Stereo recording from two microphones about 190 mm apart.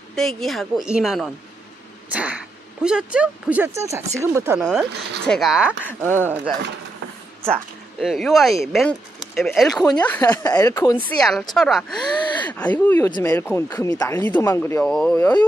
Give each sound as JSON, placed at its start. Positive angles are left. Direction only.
{"t": 0.1, "sound": "a woman's voice", "side_deg": 0}
{"t": 2.8, "sound": "speech", "side_deg": -5}
{"t": 5.2, "sound": "a woman's voice", "side_deg": 0}
{"t": 7.5, "sound": "speech", "side_deg": 0}
{"t": 11.1, "sound": "a woman's voice", "side_deg": 0}
{"t": 12.1, "sound": "gasp", "side_deg": 25}
{"t": 12.4, "sound": "speech", "side_deg": 10}